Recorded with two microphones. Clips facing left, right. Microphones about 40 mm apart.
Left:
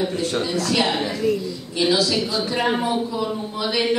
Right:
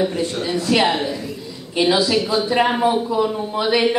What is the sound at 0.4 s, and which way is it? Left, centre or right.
A woman's voice, centre.